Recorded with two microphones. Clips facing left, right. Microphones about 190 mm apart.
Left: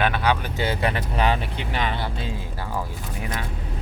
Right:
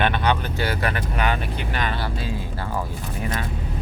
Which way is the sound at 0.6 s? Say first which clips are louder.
Left 1 dB; 25° left (ahead or behind).